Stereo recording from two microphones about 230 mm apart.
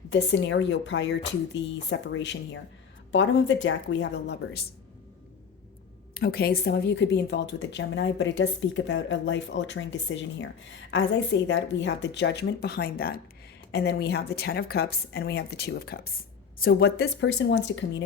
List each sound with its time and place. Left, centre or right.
0.1 s speech: left
6.1 s speech: left